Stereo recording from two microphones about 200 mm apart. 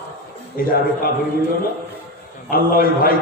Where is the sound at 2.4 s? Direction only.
45° left (ahead or behind).